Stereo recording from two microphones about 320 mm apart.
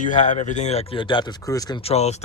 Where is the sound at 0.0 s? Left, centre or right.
Left.